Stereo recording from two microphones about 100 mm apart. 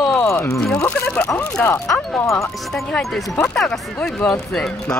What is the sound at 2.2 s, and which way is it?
Speech, 30° left (ahead or behind).